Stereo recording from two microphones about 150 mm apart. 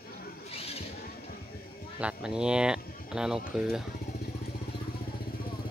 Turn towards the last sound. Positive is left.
turn(degrees=-5)  # may be behind; listen again after turning